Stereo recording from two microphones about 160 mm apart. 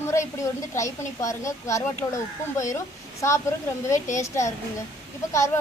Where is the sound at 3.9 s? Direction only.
50° left (ahead or behind).